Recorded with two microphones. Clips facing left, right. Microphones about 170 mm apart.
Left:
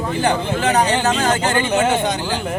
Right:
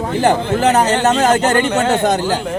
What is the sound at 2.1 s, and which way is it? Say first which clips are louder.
Speech: right 6 dB; 45° right (ahead or behind).